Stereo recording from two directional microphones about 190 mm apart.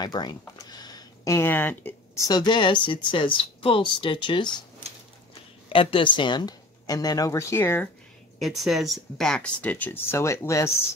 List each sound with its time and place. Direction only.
0.0 s speech: 20° left (ahead or behind)
5.7 s speech: 30° left (ahead or behind); by 7.9 s 10° left (ahead or behind)
8.4 s speech: centre (ahead or behind); by 10.7 s 15° left (ahead or behind)